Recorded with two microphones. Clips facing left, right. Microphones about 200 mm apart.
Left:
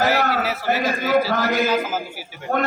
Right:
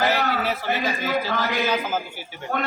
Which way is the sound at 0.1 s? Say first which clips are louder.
Left 3 dB; 50° left (ahead or behind).